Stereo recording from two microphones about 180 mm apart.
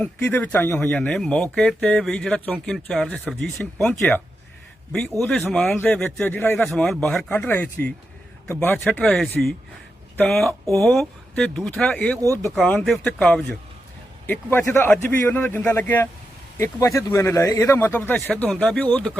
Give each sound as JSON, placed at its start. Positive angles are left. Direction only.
{"t": 0.0, "sound": "speech", "side_deg": 10}
{"t": 12.2, "sound": "speech", "side_deg": -15}
{"t": 12.5, "sound": "speech", "side_deg": 5}